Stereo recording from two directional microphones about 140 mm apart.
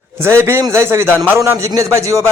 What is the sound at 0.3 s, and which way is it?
A man's voice, 15° right (ahead or behind).